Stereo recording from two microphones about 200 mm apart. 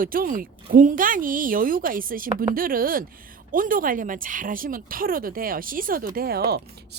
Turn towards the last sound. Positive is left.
turn(degrees=-55)  # may be behind; listen again after turning